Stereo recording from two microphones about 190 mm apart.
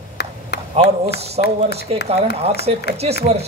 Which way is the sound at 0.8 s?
65° left (ahead or behind).